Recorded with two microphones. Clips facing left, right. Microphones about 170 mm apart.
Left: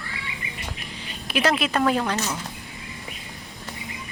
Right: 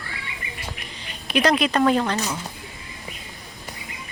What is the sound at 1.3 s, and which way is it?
Speech, 5° left (ahead or behind).